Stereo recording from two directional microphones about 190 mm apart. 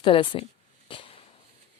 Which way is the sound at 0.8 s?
30° left (ahead or behind).